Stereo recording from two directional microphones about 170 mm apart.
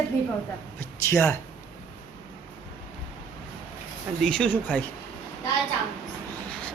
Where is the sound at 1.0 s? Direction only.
15° left (ahead or behind).